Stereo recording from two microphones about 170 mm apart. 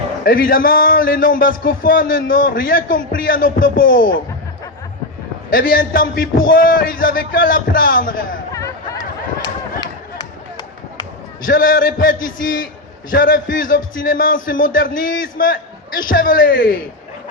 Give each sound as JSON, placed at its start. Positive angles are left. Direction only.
{"t": 0.3, "sound": "a man's voice", "side_deg": 60}
{"t": 5.5, "sound": "a man's voice", "side_deg": 55}
{"t": 8.5, "sound": "a sound", "side_deg": 20}
{"t": 11.4, "sound": "a man's voice", "side_deg": 55}